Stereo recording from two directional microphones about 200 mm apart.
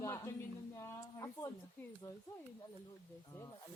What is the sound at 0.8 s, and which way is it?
A woman's voice, 15° left (ahead or behind).